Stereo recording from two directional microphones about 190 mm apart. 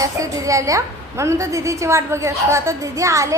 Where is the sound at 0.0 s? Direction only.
15° right (ahead or behind).